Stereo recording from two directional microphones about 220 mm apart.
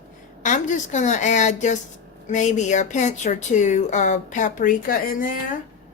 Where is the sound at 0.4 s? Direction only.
35° left (ahead or behind).